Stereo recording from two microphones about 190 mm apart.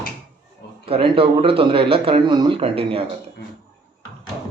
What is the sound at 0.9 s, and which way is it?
Speech, 30° right (ahead or behind).